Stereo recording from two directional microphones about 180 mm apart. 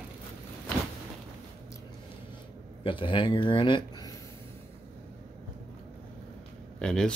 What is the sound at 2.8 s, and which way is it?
Speech, 30° left (ahead or behind).